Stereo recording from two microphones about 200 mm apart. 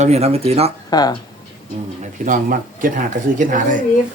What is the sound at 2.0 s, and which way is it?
Speech, 40° right (ahead or behind).